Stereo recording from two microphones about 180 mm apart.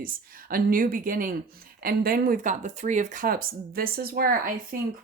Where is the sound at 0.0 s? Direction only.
50° right (ahead or behind).